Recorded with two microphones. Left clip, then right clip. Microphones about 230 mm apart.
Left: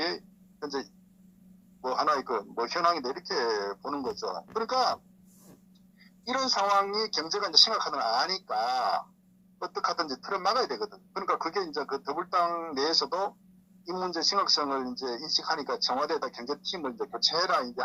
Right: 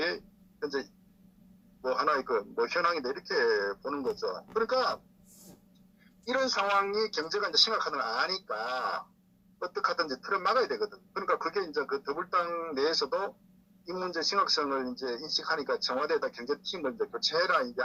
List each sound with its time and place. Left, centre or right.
0.6 s speech: left
6.2 s speech: left